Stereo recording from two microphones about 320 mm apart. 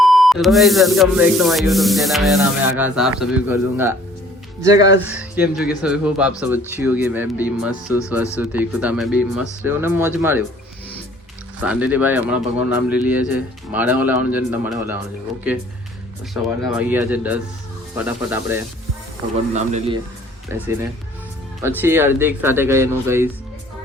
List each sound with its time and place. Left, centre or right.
0.0 s sanding: centre
4.6 s speech: centre
5.8 s sanding: centre
11.6 s sanding: centre
16.3 s sanding: centre
19.5 s a man's voice: centre
20.5 s speech: centre